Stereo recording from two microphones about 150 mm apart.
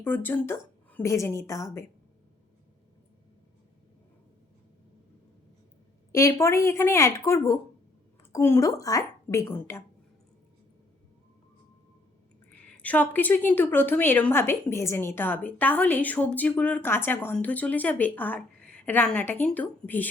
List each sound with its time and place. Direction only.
0.0 s a woman's voice: 15° left (ahead or behind)
6.1 s a woman's voice: 20° left (ahead or behind)
12.5 s a woman's voice: 10° left (ahead or behind)